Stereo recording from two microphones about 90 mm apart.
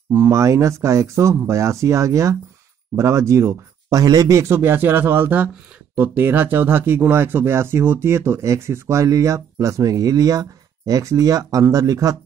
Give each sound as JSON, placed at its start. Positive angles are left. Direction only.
{"t": 0.1, "sound": "speech", "side_deg": -35}
{"t": 4.0, "sound": "speech", "side_deg": -45}